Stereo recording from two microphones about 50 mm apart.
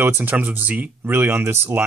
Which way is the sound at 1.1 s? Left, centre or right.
Right.